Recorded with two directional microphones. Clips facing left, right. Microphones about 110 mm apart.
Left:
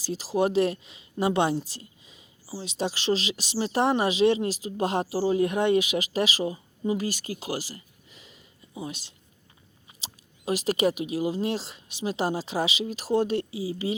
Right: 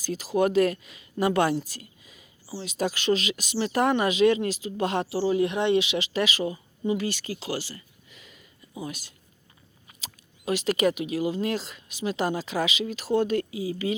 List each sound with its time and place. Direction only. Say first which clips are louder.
0.0 s speech: right 1 dB; 30° left (ahead or behind)
6.4 s speech: even; 25° left (ahead or behind)
6.9 s speech: right 1 dB; 40° left (ahead or behind)
7.8 s a sound: even; 35° left (ahead or behind)
8.7 s speech: even; 25° left (ahead or behind)
10.0 s a sound: even; 35° left (ahead or behind)
11.1 s speech: even; 35° left (ahead or behind)